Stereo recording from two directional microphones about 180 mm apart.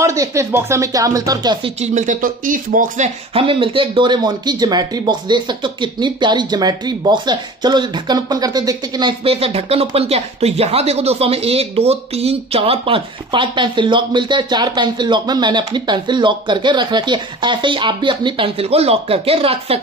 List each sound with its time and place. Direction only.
0.0 s speech: 15° right (ahead or behind)
1.8 s speech: 45° right (ahead or behind)
3.3 s speech: 30° right (ahead or behind)